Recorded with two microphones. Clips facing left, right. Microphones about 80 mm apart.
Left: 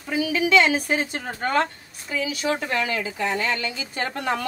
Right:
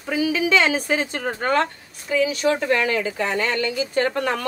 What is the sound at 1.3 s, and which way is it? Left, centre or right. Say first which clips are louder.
Speech: right 1 dB; right.